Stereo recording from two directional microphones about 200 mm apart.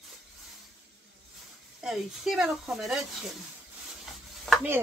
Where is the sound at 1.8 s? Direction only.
Centre (ahead or behind).